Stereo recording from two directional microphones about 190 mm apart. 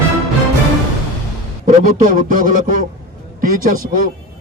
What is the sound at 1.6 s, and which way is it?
A man's voice, 45° right (ahead or behind).